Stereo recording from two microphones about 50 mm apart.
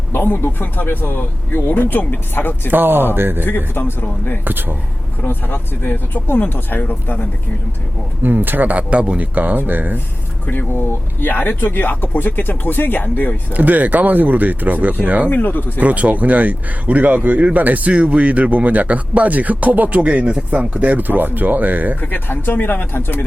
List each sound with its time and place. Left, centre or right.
0.1 s speech: left
2.6 s speech: right
3.8 s speech: left
4.4 s speech: right
5.2 s speech: left
8.2 s speech: right
10.4 s speech: left
10.7 s speech: left
13.5 s speech: right
15.3 s speech: left
15.8 s speech: right
22.0 s speech: left